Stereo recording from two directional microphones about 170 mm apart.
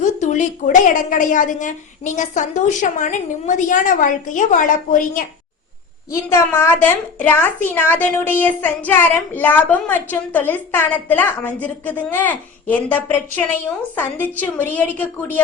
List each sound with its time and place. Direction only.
0.0 s a woman's voice: 45° left (ahead or behind)
6.1 s a woman's voice: 15° left (ahead or behind)